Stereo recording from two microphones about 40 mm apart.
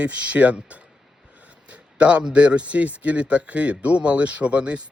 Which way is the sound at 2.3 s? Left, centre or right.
Right.